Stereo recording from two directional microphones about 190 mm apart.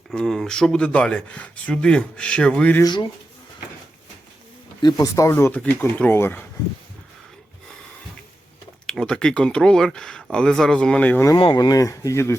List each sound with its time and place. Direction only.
0.1 s speech: 5° left (ahead or behind)
2.8 s speech: 20° left (ahead or behind)
4.8 s speech: 20° left (ahead or behind)
8.9 s speech: 5° left (ahead or behind)
11.3 s speech: 25° left (ahead or behind)